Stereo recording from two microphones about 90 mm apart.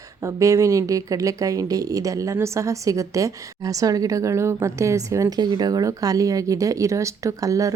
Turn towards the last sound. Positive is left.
turn(degrees=-40)  # may be behind; listen again after turning